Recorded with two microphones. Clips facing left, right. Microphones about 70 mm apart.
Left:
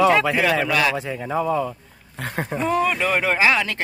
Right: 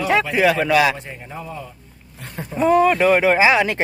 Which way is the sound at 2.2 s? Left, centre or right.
Left.